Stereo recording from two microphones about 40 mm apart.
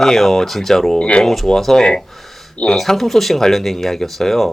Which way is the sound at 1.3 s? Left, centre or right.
Centre.